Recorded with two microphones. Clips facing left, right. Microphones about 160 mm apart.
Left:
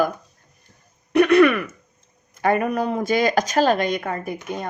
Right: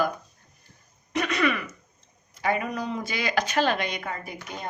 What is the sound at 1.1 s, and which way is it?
A woman's voice, 60° left (ahead or behind).